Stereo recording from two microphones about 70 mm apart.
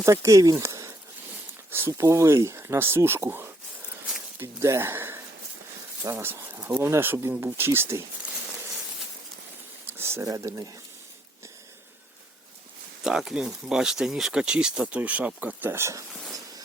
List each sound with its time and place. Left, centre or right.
0.0 s speech: right
4.6 s speech: right
6.2 s speech: right
10.0 s a sound: right
10.2 s speech: right
13.1 s speech: centre; by 15.7 s right
15.7 s speech: right